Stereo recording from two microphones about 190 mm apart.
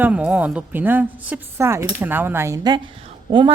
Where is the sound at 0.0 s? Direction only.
5° right (ahead or behind).